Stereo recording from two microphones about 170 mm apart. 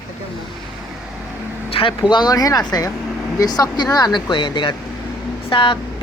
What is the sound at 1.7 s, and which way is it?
Speech, 30° left (ahead or behind).